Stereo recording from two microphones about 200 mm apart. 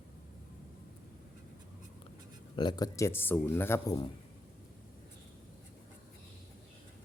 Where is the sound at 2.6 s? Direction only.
20° left (ahead or behind).